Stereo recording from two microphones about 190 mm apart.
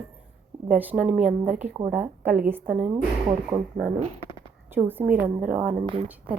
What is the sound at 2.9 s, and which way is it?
Speech, 20° right (ahead or behind).